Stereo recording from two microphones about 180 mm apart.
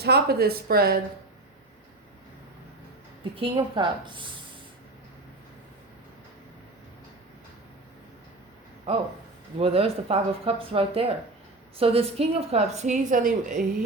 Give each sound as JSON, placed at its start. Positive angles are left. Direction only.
{"t": 0.0, "sound": "speech", "side_deg": -60}
{"t": 3.3, "sound": "a woman's voice", "side_deg": -30}
{"t": 9.6, "sound": "a woman's voice", "side_deg": -35}